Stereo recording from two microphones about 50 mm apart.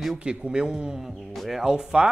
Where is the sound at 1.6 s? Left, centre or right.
Centre.